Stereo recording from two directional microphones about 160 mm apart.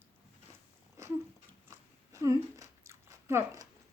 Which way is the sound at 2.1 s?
20° right (ahead or behind).